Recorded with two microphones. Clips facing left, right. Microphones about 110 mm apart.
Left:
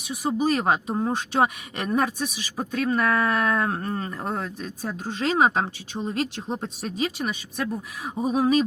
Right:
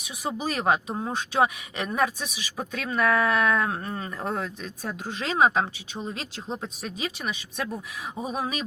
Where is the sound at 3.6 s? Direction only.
45° left (ahead or behind).